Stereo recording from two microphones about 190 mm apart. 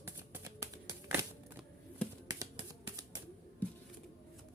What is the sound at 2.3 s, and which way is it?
Finger snapping, 15° right (ahead or behind).